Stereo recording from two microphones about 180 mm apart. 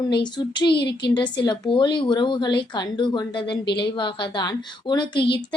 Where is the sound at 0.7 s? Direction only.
65° left (ahead or behind).